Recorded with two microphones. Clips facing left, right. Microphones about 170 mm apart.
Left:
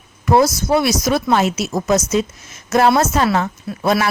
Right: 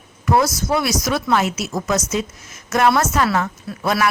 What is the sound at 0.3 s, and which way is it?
Speech, 30° left (ahead or behind).